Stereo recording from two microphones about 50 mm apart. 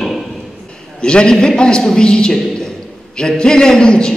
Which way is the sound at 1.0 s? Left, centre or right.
Centre.